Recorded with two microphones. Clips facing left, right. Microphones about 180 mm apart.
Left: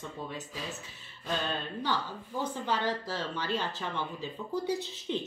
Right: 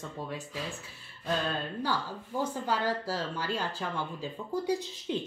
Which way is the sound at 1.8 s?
10° right (ahead or behind).